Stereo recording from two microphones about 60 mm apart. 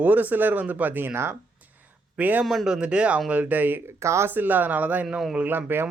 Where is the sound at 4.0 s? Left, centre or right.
Right.